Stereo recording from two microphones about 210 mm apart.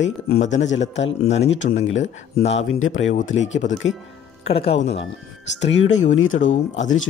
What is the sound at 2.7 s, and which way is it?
Speech, 70° left (ahead or behind).